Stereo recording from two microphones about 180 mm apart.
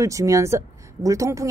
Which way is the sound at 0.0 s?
20° right (ahead or behind).